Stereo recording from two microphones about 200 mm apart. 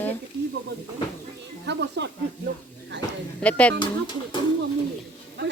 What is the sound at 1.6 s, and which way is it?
Speech, 60° right (ahead or behind).